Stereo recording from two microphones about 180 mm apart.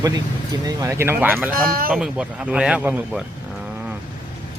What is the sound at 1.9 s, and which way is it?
Speech, 5° right (ahead or behind).